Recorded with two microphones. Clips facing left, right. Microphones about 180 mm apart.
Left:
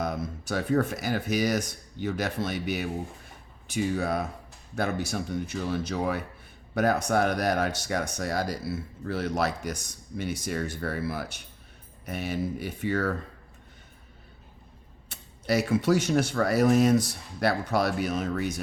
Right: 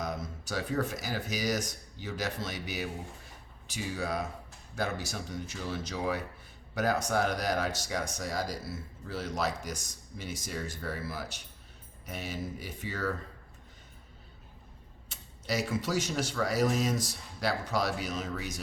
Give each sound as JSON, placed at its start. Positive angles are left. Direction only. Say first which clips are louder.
{"t": 0.0, "sound": "speech", "louder": "left 5 dB", "side_deg": 60}
{"t": 15.1, "sound": "speech", "louder": "left 7 dB", "side_deg": 60}